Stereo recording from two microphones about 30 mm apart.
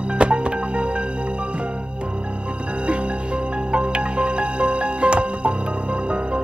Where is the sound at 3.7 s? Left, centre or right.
Right.